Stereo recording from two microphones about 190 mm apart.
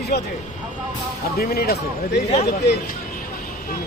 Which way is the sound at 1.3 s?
55° left (ahead or behind).